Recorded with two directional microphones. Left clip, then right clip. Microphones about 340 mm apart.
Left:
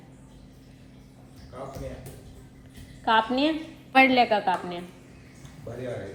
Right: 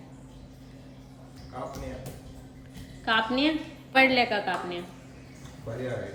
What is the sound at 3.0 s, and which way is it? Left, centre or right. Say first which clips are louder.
A woman's voice: left 3 dB; centre.